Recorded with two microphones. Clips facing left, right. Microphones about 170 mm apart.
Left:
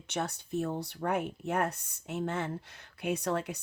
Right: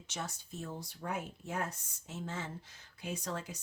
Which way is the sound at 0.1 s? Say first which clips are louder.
Left 9 dB; 65° left (ahead or behind).